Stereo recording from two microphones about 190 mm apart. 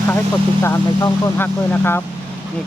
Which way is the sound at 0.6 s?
10° left (ahead or behind).